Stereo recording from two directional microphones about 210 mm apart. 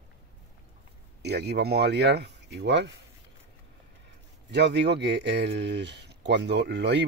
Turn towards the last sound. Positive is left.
turn(degrees=-55)  # may be behind; listen again after turning